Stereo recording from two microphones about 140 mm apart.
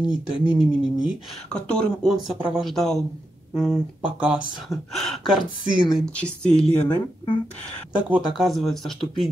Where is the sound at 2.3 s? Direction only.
5° right (ahead or behind).